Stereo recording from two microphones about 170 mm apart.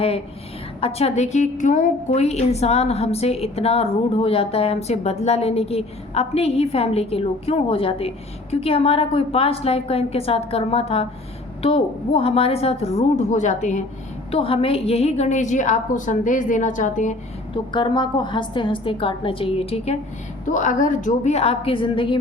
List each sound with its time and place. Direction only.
0.8 s a woman's voice: 35° left (ahead or behind)
14.3 s a woman's voice: 35° left (ahead or behind)
17.5 s a woman's voice: 30° left (ahead or behind)
20.4 s a woman's voice: 50° left (ahead or behind); by 22.2 s 30° left (ahead or behind)